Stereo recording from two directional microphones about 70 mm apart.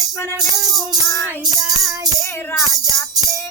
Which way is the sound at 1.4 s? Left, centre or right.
Right.